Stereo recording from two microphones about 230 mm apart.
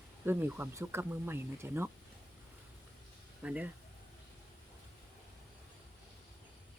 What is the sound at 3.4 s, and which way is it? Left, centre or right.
Speech, centre.